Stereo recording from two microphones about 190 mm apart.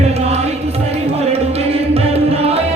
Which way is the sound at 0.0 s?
35° right (ahead or behind).